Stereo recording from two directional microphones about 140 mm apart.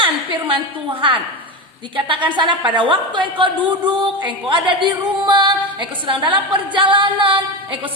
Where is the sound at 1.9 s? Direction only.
35° right (ahead or behind).